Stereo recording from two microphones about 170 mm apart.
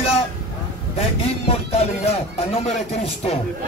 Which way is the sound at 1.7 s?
35° left (ahead or behind).